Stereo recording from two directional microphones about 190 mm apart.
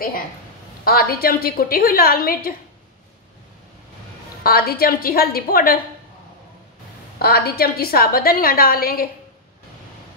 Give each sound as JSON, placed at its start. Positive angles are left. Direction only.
{"t": 0.8, "sound": "a woman's voice", "side_deg": 55}
{"t": 4.4, "sound": "a woman's voice", "side_deg": 55}
{"t": 7.2, "sound": "a woman's voice", "side_deg": 55}